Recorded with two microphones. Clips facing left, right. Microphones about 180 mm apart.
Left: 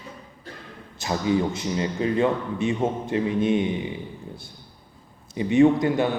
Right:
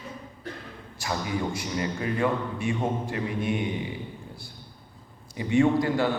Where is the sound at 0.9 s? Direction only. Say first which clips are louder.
Left 7 dB; 25° left (ahead or behind).